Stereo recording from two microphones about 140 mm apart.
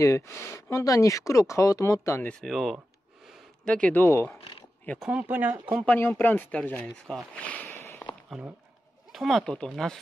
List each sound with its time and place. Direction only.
0.0 s speech: 20° left (ahead or behind)
2.4 s speech: centre (ahead or behind); by 4.3 s 15° left (ahead or behind)
4.4 s a sound: 40° left (ahead or behind)
4.8 s speech: centre (ahead or behind)
5.1 s speech: 15° right (ahead or behind)
5.9 s speech: 15° left (ahead or behind)
7.8 s a sound: 15° left (ahead or behind)
8.3 s speech: 10° right (ahead or behind)